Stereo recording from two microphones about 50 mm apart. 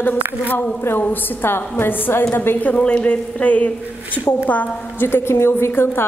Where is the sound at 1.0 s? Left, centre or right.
Left.